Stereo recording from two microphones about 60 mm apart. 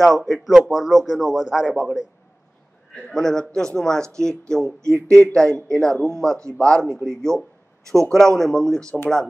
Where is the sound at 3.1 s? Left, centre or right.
Centre.